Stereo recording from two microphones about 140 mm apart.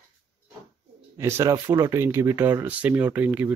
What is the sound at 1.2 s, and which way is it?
Speech, 20° right (ahead or behind).